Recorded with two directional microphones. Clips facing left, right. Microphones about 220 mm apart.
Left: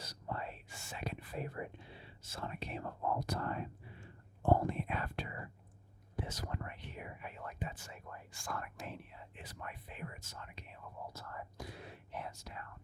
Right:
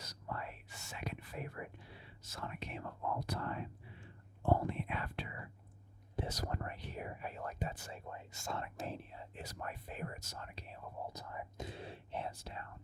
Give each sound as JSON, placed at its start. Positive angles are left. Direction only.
{"t": 0.0, "sound": "whispering", "side_deg": 30}
{"t": 6.2, "sound": "whispering", "side_deg": -40}
{"t": 7.9, "sound": "speech", "side_deg": -30}
{"t": 8.9, "sound": "whispering", "side_deg": -30}
{"t": 11.1, "sound": "speech", "side_deg": -15}